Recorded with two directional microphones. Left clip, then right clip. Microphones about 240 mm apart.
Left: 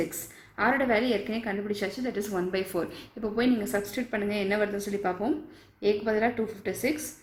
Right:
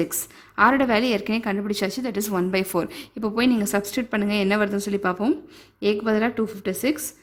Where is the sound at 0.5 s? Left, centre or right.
Right.